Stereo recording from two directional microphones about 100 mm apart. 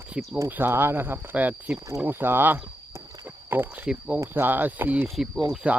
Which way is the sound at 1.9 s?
25° right (ahead or behind).